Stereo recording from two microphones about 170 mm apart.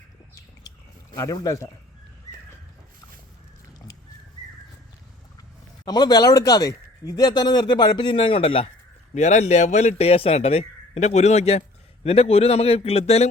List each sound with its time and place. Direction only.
1.1 s speech: 20° left (ahead or behind)
5.8 s a man's voice: 25° left (ahead or behind)